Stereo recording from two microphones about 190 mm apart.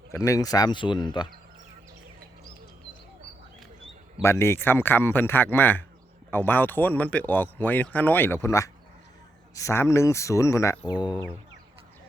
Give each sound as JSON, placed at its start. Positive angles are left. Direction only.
{"t": 0.1, "sound": "speech", "side_deg": 15}
{"t": 4.2, "sound": "speech", "side_deg": 15}